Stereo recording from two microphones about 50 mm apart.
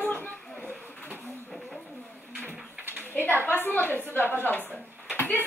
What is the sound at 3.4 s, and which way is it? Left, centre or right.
A woman's voice, left.